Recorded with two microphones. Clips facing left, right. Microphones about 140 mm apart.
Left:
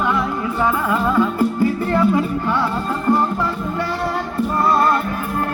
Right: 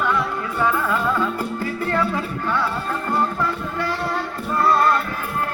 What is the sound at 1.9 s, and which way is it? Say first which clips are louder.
Music: left 4 dB; 15° left (ahead or behind).